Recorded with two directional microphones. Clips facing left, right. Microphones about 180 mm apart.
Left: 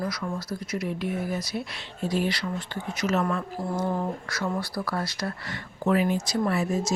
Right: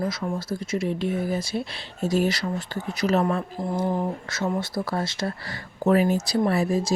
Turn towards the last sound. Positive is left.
turn(degrees=-35)  # may be behind; listen again after turning